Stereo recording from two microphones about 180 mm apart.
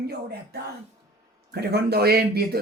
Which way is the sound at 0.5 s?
65° right (ahead or behind).